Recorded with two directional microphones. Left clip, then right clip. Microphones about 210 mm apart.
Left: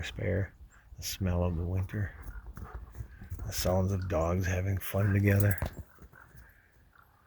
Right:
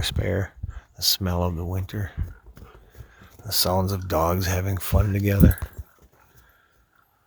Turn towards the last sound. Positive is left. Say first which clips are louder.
# right 7 dB
turn(degrees=-20)  # may be behind; listen again after turning